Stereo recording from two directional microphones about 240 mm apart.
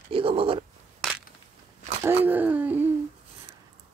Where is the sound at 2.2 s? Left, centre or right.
Centre.